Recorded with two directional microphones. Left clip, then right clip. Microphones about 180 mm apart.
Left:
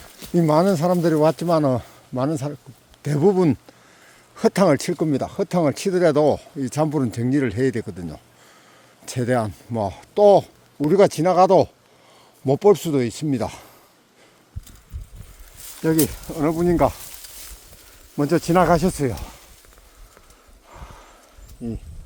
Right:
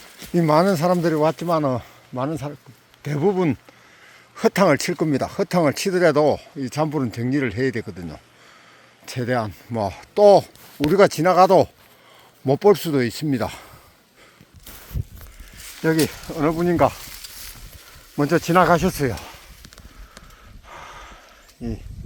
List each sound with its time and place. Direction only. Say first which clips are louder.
0.3 s speech: even; 10° left (ahead or behind); by 3.6 s 35° left (ahead or behind)
4.4 s speech: even; 20° left (ahead or behind)
4.9 s speech: right 1 dB; centre (ahead or behind); by 9.6 s 25° left (ahead or behind)
9.7 s speech: even; 10° left (ahead or behind)
15.8 s speech: even; centre (ahead or behind)
18.2 s speech: right 1 dB; 10° left (ahead or behind)
20.7 s horse: right 5 dB; centre (ahead or behind)